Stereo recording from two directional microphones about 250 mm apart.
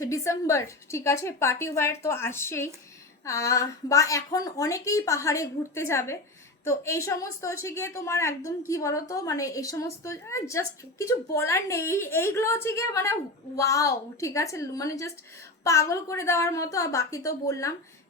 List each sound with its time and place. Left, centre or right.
0.0 s a woman's voice: centre